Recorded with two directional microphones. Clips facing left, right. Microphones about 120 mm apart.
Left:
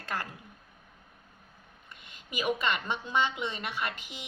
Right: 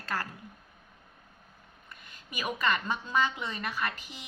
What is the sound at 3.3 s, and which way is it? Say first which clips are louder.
Speech: left 1 dB; 15° left (ahead or behind).